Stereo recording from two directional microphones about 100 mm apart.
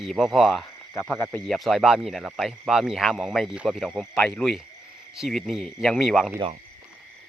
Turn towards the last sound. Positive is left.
turn(degrees=0)  # may be behind; listen again after turning